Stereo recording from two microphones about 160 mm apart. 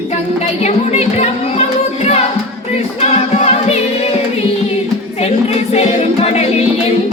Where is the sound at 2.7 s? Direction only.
40° left (ahead or behind).